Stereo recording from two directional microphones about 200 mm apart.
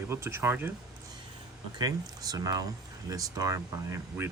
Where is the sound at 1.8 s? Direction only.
20° right (ahead or behind).